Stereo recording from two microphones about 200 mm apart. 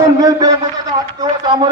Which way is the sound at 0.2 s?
20° right (ahead or behind).